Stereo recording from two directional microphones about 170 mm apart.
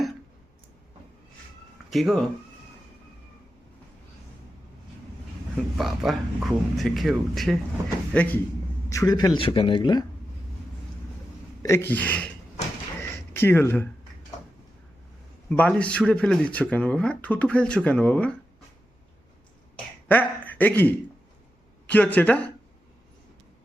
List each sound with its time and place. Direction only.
1.9 s speech: centre (ahead or behind)
5.5 s speech: centre (ahead or behind)
8.9 s a man's voice: 20° left (ahead or behind)
11.6 s speech: 15° left (ahead or behind)
13.0 s a sound: 15° left (ahead or behind)
15.4 s speech: 10° left (ahead or behind)
20.1 s speech: 10° left (ahead or behind)